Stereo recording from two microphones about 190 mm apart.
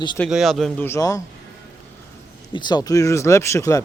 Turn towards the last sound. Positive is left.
turn(degrees=15)  # may be behind; listen again after turning